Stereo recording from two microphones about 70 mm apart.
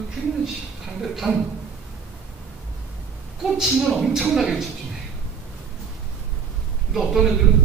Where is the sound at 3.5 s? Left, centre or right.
Centre.